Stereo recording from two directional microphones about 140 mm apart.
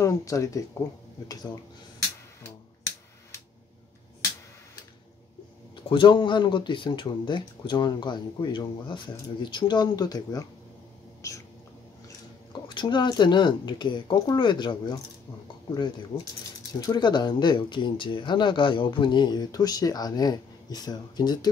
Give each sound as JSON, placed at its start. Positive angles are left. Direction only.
{"t": 0.0, "sound": "speech", "side_deg": 20}
{"t": 5.9, "sound": "speech", "side_deg": 35}
{"t": 12.6, "sound": "speech", "side_deg": 35}
{"t": 16.1, "sound": "speech", "side_deg": 40}